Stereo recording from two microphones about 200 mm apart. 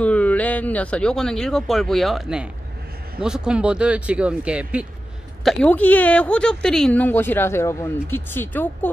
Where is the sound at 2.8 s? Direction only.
50° right (ahead or behind).